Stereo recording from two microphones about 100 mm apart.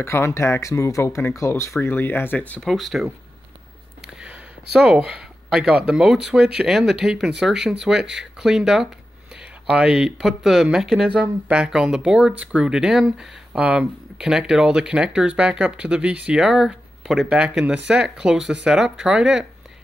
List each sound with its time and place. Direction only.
0.0 s speech: 25° left (ahead or behind)
2.6 s speech: centre (ahead or behind)
4.2 s speech: 10° right (ahead or behind)